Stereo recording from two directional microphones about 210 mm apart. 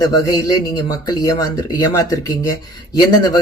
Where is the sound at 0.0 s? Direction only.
20° left (ahead or behind).